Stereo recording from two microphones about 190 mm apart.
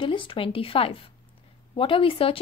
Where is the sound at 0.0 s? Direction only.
25° left (ahead or behind).